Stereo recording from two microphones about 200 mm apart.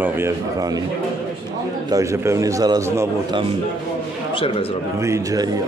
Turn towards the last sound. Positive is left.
turn(degrees=-15)  # may be behind; listen again after turning